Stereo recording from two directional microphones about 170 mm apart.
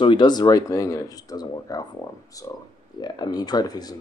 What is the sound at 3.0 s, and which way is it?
Speech, 25° left (ahead or behind).